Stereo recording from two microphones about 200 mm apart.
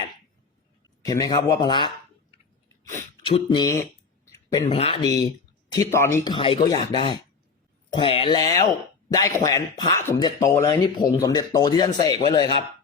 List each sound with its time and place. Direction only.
1.0 s speech: 20° left (ahead or behind)
3.2 s speech: 25° left (ahead or behind)
4.3 s a sound: 15° left (ahead or behind)
4.7 s speech: 30° left (ahead or behind)